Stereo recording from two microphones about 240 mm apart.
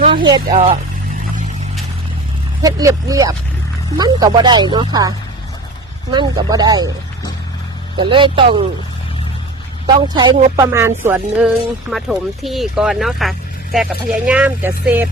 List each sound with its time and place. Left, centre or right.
0.0 s speech: centre
2.6 s speech: centre
7.9 s speech: right
9.8 s music: centre